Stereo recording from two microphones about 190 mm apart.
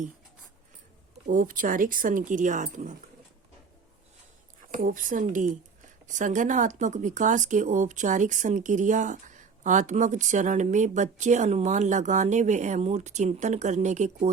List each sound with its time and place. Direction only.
1.3 s speech: 45° right (ahead or behind)
4.7 s speech: 45° right (ahead or behind)